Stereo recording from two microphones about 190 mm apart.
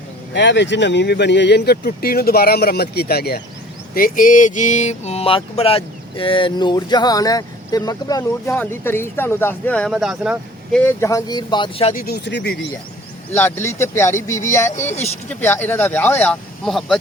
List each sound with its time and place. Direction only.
0.3 s speech: 65° left (ahead or behind)
3.9 s mantra: 45° left (ahead or behind); by 10.9 s 5° left (ahead or behind)
11.0 s mantra: 20° left (ahead or behind)
11.9 s speech: 55° left (ahead or behind)
13.3 s speech: 15° left (ahead or behind)